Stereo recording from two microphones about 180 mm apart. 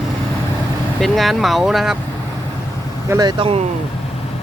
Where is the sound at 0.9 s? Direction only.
Centre (ahead or behind).